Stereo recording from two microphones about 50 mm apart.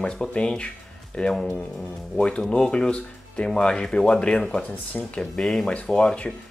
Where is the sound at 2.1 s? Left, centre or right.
Centre.